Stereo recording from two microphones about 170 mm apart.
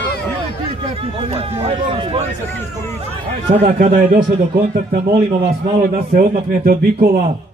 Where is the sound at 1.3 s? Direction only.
30° right (ahead or behind).